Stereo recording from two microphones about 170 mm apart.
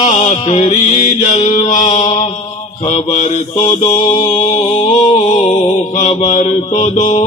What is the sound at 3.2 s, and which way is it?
Mantra, 40° left (ahead or behind).